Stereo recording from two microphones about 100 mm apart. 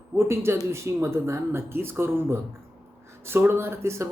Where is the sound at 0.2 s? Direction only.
25° right (ahead or behind).